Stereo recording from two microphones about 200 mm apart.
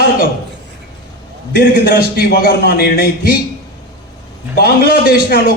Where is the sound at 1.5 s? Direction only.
50° left (ahead or behind).